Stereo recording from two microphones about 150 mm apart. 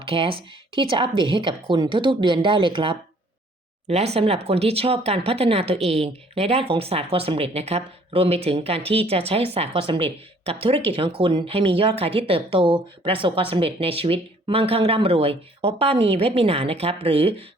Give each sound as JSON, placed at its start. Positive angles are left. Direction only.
{"t": 0.0, "sound": "speech", "side_deg": -35}